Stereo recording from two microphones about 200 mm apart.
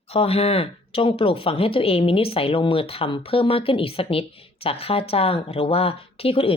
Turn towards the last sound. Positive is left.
turn(degrees=30)  # may be behind; listen again after turning